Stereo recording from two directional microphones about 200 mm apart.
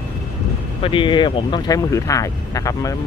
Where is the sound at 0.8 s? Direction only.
25° left (ahead or behind).